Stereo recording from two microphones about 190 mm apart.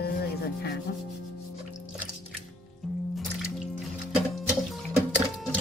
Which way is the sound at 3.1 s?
Centre (ahead or behind).